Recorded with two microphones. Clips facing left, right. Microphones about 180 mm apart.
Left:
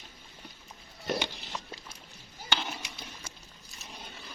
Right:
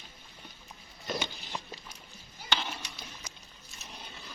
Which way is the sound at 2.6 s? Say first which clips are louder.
Left 1 dB; 10° left (ahead or behind).